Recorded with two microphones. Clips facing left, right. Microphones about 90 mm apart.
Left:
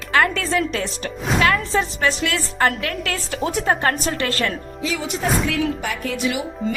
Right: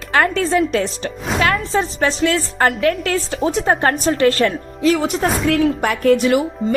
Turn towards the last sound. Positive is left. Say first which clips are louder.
# right 7 dB
turn(degrees=-45)  # may be behind; listen again after turning